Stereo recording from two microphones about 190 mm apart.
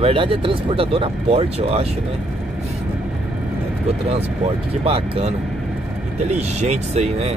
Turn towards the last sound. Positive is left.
turn(degrees=-35)  # may be behind; listen again after turning